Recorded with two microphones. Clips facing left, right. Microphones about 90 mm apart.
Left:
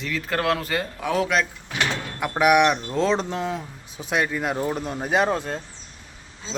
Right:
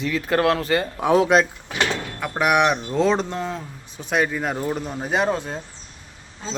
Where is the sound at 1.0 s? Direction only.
25° right (ahead or behind).